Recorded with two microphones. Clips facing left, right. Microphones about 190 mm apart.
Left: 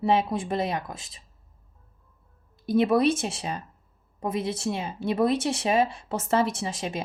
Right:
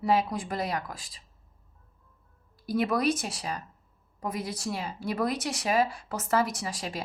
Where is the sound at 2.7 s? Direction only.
25° left (ahead or behind).